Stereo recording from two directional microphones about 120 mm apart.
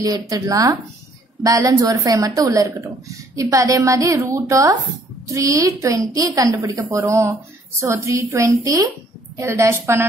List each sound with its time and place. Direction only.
0.0 s a woman's voice: 30° right (ahead or behind)